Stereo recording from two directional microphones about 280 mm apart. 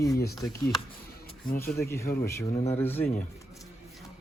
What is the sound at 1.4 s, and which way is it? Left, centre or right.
Speech, left.